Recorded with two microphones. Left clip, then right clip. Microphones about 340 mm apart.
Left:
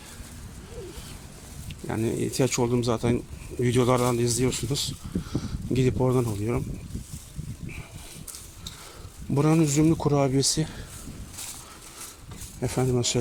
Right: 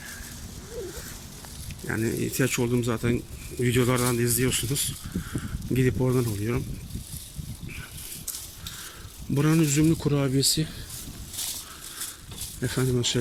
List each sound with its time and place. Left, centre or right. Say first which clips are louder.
1.9 s speech: even; centre
9.3 s speech: left 1 dB; centre
12.5 s speech: left 1 dB; centre